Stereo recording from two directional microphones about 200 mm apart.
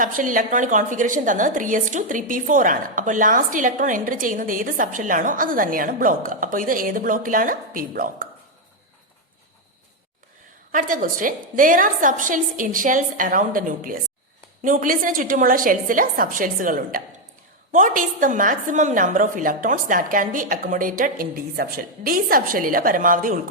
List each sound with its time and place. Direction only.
0.0 s a woman's voice: 40° right (ahead or behind)
10.7 s a woman's voice: 40° right (ahead or behind)